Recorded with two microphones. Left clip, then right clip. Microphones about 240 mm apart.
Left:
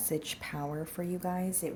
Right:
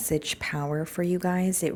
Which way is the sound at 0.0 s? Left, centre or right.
Right.